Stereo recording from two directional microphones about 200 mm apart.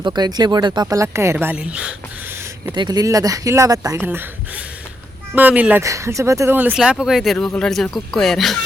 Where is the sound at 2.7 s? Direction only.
20° right (ahead or behind).